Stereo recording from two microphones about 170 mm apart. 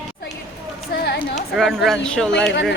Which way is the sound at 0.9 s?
75° left (ahead or behind).